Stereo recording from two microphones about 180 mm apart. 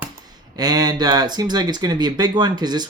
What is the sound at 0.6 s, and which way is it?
Speech, 20° right (ahead or behind).